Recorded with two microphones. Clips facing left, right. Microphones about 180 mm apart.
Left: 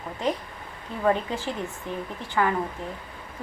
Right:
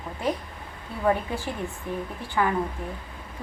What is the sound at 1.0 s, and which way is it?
Speech, 15° right (ahead or behind).